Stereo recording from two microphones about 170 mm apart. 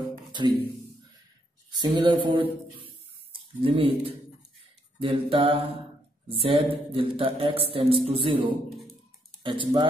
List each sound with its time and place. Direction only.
0.3 s music: 25° right (ahead or behind)
1.7 s speech: 25° right (ahead or behind)
3.6 s speech: 30° right (ahead or behind)